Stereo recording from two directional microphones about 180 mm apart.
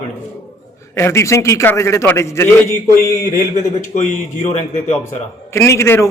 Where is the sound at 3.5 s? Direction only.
45° left (ahead or behind).